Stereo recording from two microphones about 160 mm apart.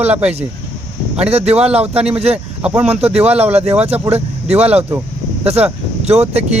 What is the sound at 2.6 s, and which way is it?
Speech, 5° right (ahead or behind).